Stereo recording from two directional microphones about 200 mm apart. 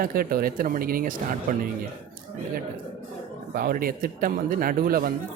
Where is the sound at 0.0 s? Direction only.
45° right (ahead or behind).